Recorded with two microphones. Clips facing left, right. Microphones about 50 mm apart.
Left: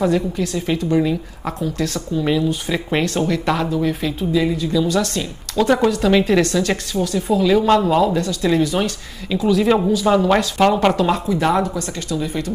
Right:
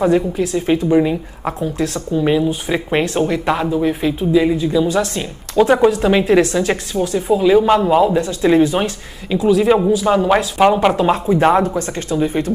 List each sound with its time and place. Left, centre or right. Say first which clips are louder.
0.4 s speech: right 4 dB; centre
9.4 s speech: right 3 dB; centre
11.0 s speech: right 4 dB; right